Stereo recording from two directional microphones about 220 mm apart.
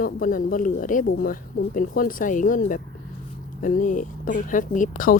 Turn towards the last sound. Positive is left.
turn(degrees=40)  # may be behind; listen again after turning